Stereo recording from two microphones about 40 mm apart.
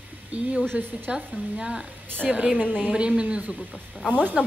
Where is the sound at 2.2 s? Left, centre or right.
Centre.